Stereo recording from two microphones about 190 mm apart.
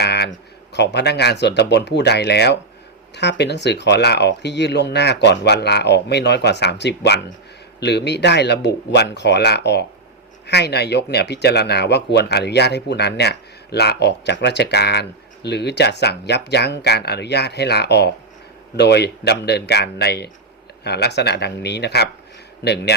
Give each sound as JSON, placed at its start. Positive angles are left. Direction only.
{"t": 0.0, "sound": "speech", "side_deg": 60}